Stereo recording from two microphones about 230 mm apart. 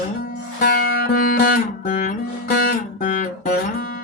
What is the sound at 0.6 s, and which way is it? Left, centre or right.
Music, left.